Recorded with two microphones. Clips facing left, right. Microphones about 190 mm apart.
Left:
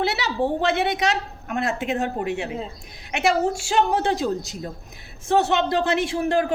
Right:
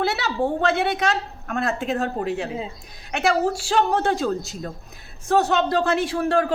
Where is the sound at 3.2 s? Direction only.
10° left (ahead or behind).